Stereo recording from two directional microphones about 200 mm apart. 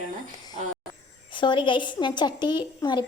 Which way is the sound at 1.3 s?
25° left (ahead or behind).